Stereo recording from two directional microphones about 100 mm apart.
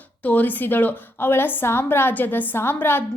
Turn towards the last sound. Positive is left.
turn(degrees=20)  # may be behind; listen again after turning